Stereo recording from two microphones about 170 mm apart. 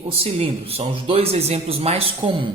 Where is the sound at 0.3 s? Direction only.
40° right (ahead or behind).